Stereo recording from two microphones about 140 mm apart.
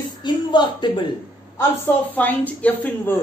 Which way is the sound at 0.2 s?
35° left (ahead or behind).